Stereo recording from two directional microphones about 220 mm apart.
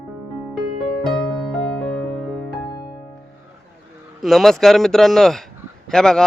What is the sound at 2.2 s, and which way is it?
Music, centre (ahead or behind).